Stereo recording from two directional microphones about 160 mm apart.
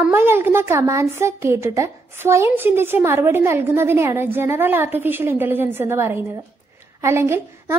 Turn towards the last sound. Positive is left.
turn(degrees=-15)  # may be behind; listen again after turning